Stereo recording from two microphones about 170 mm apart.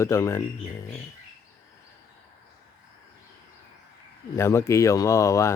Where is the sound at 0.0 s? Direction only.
15° left (ahead or behind).